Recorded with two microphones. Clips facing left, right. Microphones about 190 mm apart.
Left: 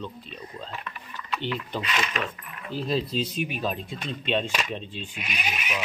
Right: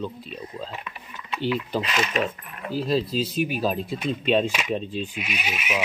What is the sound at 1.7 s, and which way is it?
Speech, 40° right (ahead or behind).